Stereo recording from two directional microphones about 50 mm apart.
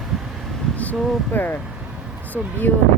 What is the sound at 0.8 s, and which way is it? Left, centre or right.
Speech, left.